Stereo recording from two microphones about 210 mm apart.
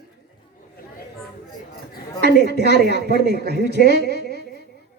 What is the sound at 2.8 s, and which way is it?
Speech, 50° right (ahead or behind).